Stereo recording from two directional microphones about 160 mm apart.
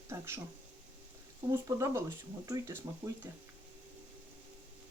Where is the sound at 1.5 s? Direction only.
20° right (ahead or behind).